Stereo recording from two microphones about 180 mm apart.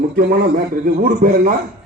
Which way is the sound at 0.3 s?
55° right (ahead or behind).